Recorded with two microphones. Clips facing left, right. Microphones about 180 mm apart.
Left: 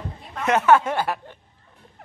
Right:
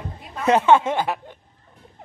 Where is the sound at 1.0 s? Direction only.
15° right (ahead or behind).